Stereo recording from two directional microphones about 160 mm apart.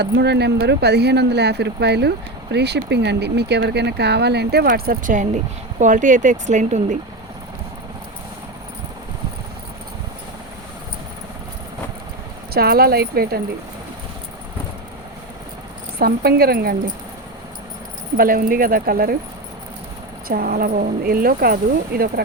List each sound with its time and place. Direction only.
0.0 s speech: 90° right; by 7.0 s 50° right (ahead or behind)
12.5 s speech: 70° right (ahead or behind)
16.0 s speech: 70° right (ahead or behind)
18.2 s speech: 60° right (ahead or behind)
20.2 s speech: 60° right (ahead or behind)